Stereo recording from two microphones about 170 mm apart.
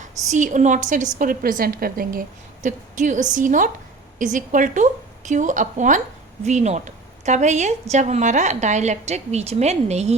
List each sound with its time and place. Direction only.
0.3 s a woman's voice: 45° right (ahead or behind)